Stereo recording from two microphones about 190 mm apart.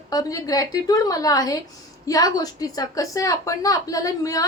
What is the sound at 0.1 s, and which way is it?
A woman's voice, 20° left (ahead or behind).